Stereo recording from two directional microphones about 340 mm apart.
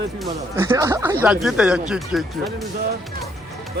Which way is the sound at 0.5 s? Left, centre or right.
Centre.